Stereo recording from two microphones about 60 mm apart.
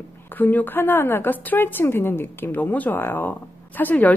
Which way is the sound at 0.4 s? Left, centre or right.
Left.